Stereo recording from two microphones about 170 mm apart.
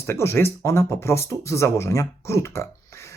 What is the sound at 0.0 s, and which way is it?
Speech, 15° left (ahead or behind).